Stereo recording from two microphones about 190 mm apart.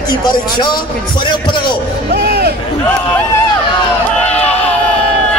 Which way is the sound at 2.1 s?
55° right (ahead or behind).